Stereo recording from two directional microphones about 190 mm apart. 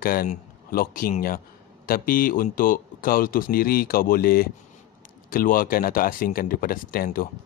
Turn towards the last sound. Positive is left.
turn(degrees=50)  # may be behind; listen again after turning